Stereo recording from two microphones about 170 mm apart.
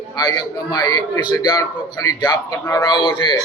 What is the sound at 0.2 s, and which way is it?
A man's voice, 20° left (ahead or behind).